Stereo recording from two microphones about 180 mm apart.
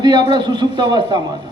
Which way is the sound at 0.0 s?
25° right (ahead or behind).